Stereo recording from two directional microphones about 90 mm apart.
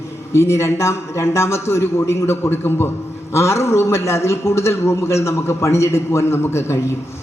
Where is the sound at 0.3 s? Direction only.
30° left (ahead or behind).